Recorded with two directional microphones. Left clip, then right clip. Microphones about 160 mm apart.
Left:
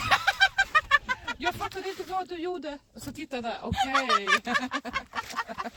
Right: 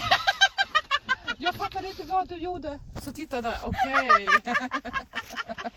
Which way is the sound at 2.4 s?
5° right (ahead or behind).